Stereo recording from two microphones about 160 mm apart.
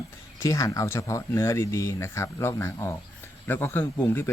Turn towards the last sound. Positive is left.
turn(degrees=15)  # may be behind; listen again after turning